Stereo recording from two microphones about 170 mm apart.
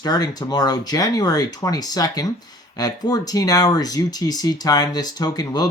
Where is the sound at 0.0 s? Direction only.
25° left (ahead or behind).